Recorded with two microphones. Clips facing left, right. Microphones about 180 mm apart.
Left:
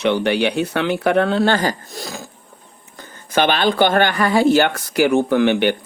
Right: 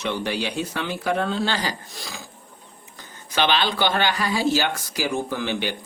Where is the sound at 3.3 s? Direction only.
50° left (ahead or behind).